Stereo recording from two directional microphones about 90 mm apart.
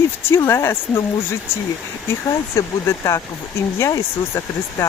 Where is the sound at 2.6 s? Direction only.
35° left (ahead or behind).